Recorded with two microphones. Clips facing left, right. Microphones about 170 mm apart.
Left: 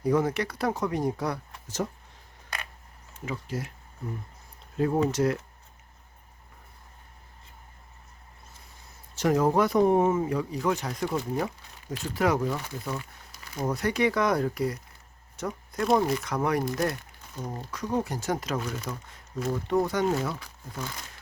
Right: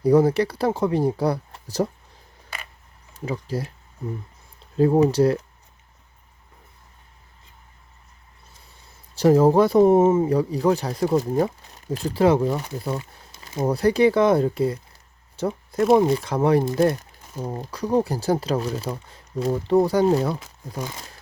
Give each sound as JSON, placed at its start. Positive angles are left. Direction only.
{"t": 0.0, "sound": "speech", "side_deg": -35}
{"t": 3.2, "sound": "speech", "side_deg": -35}
{"t": 4.8, "sound": "speech", "side_deg": -30}
{"t": 9.1, "sound": "speech", "side_deg": -30}